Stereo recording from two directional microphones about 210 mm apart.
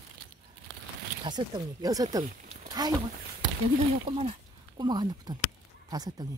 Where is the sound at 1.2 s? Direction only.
20° right (ahead or behind).